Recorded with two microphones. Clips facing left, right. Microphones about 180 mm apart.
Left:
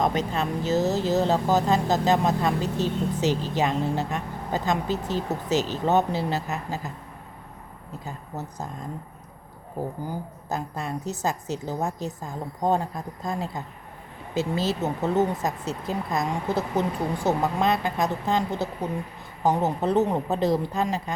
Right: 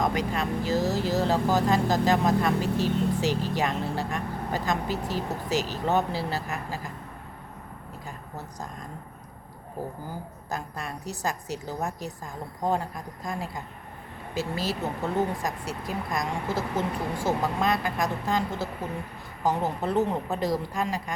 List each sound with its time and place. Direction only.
0.0 s speech: 25° left (ahead or behind)
10.1 s speech: 20° left (ahead or behind)